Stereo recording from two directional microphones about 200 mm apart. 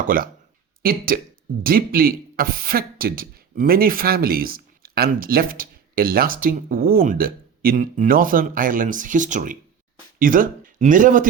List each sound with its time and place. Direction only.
0.0 s speech: 45° right (ahead or behind)